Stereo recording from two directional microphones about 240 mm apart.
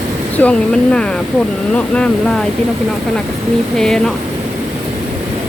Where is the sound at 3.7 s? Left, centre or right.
Centre.